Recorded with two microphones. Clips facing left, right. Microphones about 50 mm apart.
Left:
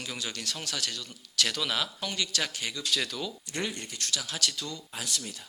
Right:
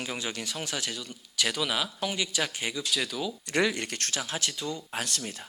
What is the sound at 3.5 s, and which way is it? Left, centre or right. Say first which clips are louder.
Speech: right 8 dB; right.